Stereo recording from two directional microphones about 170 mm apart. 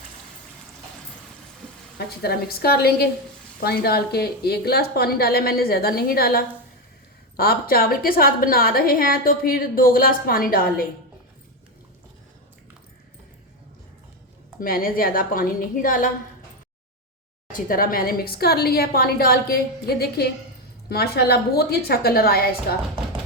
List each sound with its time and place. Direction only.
2.0 s a woman's voice: 65° left (ahead or behind)
14.6 s a woman's voice: 60° left (ahead or behind)
17.5 s a woman's voice: 55° left (ahead or behind)